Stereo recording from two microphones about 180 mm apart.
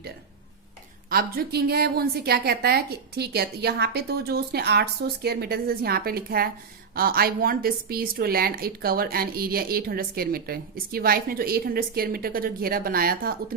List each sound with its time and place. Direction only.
1.1 s a woman's voice: 60° right (ahead or behind)